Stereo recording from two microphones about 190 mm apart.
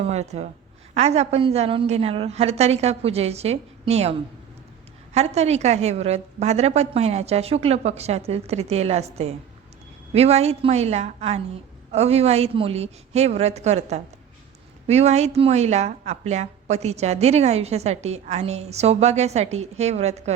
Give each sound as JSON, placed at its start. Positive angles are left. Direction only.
{"t": 0.0, "sound": "a woman's voice", "side_deg": -35}